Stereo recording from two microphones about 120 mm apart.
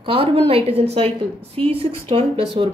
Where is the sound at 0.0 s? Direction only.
50° right (ahead or behind).